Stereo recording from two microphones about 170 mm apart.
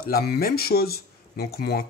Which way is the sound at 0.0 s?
65° left (ahead or behind).